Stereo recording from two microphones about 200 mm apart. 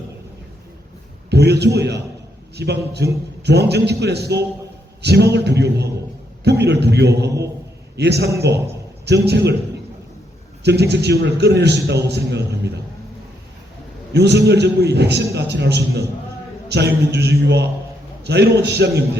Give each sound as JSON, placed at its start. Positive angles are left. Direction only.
{"t": 1.3, "sound": "a man's voice", "side_deg": -55}
{"t": 10.6, "sound": "a man's voice", "side_deg": -55}
{"t": 14.1, "sound": "a man's voice", "side_deg": -55}